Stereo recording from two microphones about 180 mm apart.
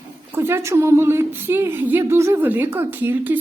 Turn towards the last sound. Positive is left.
turn(degrees=-10)  # may be behind; listen again after turning